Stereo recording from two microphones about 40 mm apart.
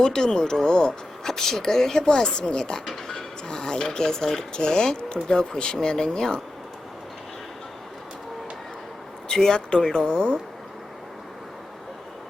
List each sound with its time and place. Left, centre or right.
0.0 s speech: centre
9.3 s speech: centre
10.2 s speech: right